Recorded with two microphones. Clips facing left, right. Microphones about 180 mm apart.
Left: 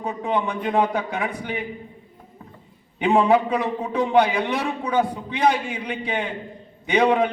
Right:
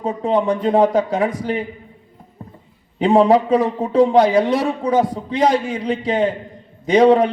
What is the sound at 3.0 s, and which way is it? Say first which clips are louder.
A man's voice: right 5 dB; 35° right (ahead or behind).